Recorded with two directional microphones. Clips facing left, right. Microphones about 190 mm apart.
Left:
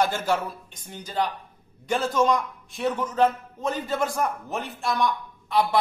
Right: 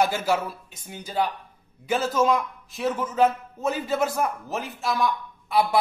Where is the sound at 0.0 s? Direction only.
10° right (ahead or behind).